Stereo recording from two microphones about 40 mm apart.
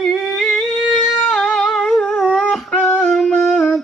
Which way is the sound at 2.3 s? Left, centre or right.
Centre.